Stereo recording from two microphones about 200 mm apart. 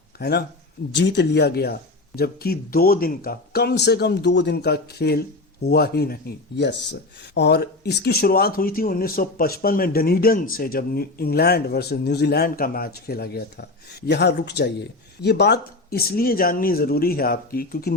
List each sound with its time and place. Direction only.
0.2 s speech: 55° left (ahead or behind)